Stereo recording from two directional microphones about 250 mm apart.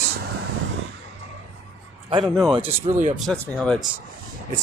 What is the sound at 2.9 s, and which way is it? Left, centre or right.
Speech, right.